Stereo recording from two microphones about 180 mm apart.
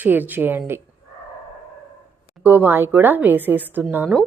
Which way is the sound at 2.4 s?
10° right (ahead or behind).